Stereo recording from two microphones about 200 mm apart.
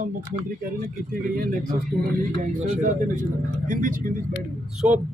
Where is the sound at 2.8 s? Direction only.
40° right (ahead or behind).